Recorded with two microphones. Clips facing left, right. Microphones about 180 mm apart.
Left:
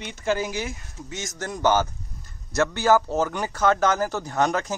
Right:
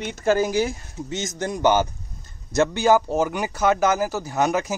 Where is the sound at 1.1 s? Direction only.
20° right (ahead or behind).